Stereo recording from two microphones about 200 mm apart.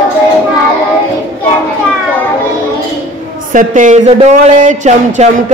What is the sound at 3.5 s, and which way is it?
Speech, 40° right (ahead or behind).